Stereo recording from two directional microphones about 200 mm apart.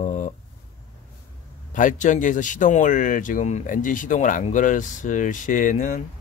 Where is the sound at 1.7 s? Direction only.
40° left (ahead or behind).